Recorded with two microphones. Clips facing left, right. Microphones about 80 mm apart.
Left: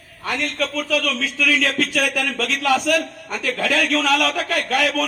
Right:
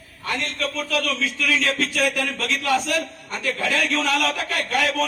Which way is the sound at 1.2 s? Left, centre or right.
Left.